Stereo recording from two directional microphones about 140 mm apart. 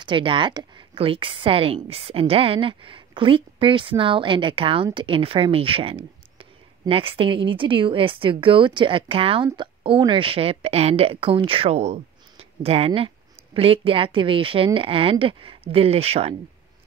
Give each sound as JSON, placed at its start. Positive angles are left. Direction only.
{"t": 0.0, "sound": "a woman's voice", "side_deg": -35}